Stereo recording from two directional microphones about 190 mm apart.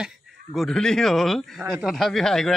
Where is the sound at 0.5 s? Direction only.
5° left (ahead or behind).